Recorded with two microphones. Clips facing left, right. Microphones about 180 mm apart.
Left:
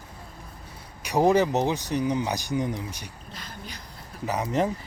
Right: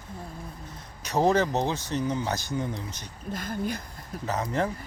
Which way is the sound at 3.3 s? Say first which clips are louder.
Right 14 dB; 50° right (ahead or behind).